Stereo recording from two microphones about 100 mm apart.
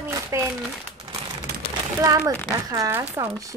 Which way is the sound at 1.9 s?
35° right (ahead or behind).